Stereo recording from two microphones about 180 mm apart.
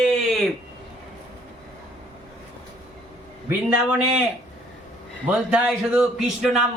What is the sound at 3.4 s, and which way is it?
Speech, 5° right (ahead or behind).